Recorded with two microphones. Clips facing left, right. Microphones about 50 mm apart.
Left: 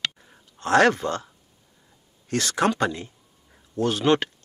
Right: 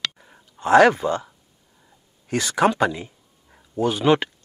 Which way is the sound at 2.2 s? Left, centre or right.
Centre.